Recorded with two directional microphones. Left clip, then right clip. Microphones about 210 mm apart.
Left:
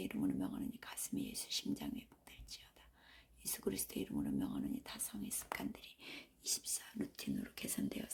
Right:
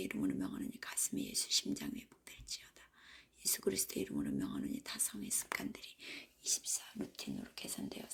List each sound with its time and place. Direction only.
0.0 s speech: centre (ahead or behind)
7.4 s speech: 25° left (ahead or behind)